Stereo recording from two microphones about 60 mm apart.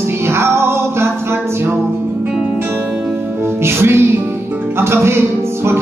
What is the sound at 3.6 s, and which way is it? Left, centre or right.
Music, right.